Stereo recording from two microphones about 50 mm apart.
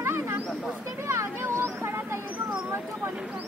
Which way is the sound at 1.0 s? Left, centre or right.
Right.